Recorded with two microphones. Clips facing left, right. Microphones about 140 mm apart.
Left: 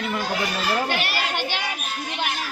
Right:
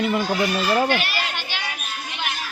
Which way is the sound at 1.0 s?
55° left (ahead or behind).